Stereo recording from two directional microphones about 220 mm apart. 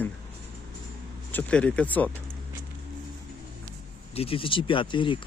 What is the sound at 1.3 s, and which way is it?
Speech, 5° left (ahead or behind).